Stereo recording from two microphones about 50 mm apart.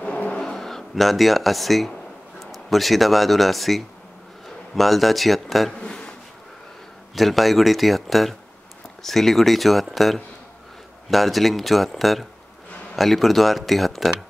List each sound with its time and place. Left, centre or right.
0.0 s vehicle: left
0.4 s speech: centre
5.8 s a sound: centre
7.2 s speech: centre